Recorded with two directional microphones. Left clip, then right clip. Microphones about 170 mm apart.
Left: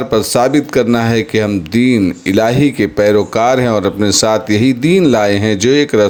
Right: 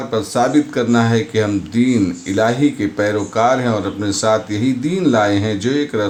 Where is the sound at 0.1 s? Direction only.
40° left (ahead or behind).